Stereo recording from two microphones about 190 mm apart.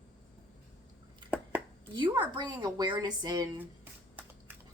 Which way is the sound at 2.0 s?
25° right (ahead or behind).